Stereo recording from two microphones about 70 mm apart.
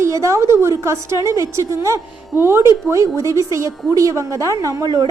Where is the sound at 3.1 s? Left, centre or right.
Right.